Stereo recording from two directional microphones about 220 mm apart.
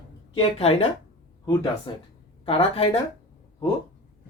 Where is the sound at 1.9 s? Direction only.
20° left (ahead or behind).